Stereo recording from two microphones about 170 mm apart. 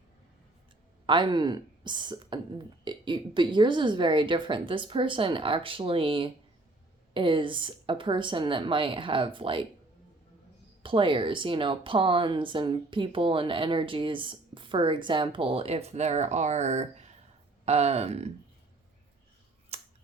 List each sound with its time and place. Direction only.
1.0 s a woman's voice: 30° right (ahead or behind)
10.8 s a woman's voice: 30° right (ahead or behind)
19.7 s scissors: 35° right (ahead or behind)